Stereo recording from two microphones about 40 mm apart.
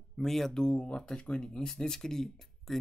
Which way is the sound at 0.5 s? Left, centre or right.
Left.